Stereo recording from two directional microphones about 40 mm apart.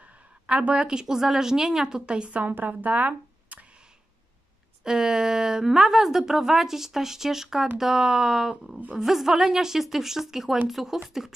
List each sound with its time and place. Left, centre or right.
0.0 s speech: right
2.5 s speech: right
4.8 s a woman's voice: centre